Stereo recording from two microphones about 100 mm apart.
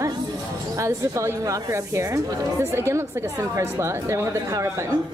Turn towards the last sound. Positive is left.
turn(degrees=-30)  # may be behind; listen again after turning